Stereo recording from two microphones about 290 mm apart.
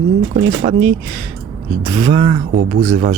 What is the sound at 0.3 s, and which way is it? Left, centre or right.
Speech, right.